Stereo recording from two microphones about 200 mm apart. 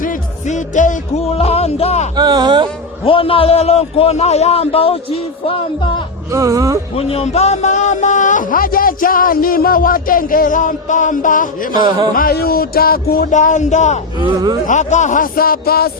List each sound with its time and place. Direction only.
0.0 s music: 40° left (ahead or behind)
2.1 s a sound: 20° right (ahead or behind)
3.0 s a man's voice: 25° left (ahead or behind)
6.3 s speech: 15° right (ahead or behind)
6.9 s speech: 30° left (ahead or behind)
11.7 s a sound: 20° right (ahead or behind)
12.1 s speech: 50° left (ahead or behind)
14.2 s a sound: 20° right (ahead or behind)
14.7 s speech: 35° left (ahead or behind)